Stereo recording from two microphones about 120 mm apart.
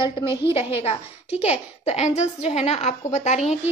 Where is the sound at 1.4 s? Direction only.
65° left (ahead or behind).